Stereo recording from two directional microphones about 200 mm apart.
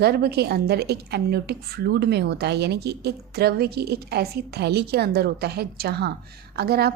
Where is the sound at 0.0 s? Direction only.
55° right (ahead or behind).